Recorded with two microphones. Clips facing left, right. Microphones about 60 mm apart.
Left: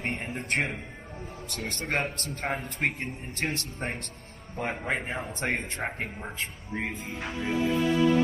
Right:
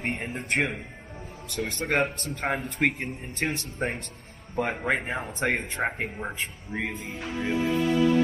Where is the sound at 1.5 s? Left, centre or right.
Right.